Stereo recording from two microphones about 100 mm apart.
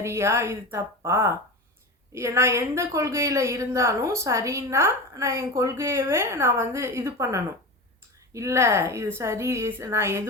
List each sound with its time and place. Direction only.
0.0 s a woman's voice: 25° right (ahead or behind)